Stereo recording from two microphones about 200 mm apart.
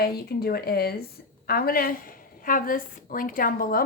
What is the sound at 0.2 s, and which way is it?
Speech, 50° left (ahead or behind).